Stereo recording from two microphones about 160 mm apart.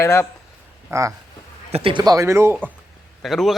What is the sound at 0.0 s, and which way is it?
Speech, 15° left (ahead or behind).